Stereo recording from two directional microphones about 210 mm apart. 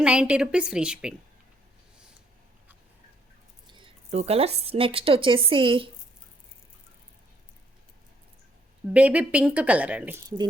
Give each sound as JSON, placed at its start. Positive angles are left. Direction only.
{"t": 0.0, "sound": "a woman's voice", "side_deg": -5}
{"t": 3.7, "sound": "speech", "side_deg": -25}
{"t": 8.9, "sound": "speech", "side_deg": -5}
{"t": 10.2, "sound": "speech", "side_deg": -20}